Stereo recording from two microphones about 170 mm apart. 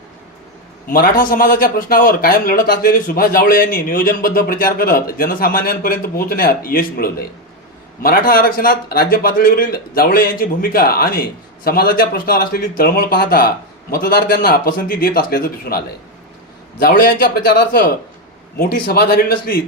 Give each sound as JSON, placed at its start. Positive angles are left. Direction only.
{"t": 0.9, "sound": "a man's voice", "side_deg": 55}
{"t": 16.8, "sound": "a man's voice", "side_deg": 60}